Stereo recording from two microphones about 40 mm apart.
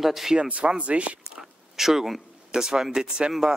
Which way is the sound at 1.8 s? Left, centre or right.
Centre.